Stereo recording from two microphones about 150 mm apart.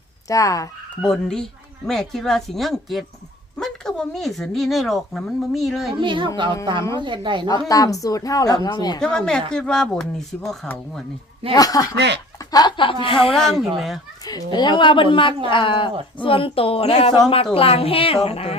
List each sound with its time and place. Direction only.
0.3 s a woman's voice: 20° left (ahead or behind)
1.0 s speech: 5° left (ahead or behind)
6.0 s speech: 35° right (ahead or behind)
7.7 s a woman's voice: 25° left (ahead or behind)
9.0 s speech: 5° left (ahead or behind)
11.5 s a woman's voice: 25° left (ahead or behind)
13.3 s speech: centre (ahead or behind)
14.3 s a woman's voice: 25° left (ahead or behind)